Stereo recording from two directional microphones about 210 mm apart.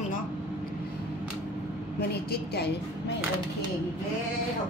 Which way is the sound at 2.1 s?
50° left (ahead or behind).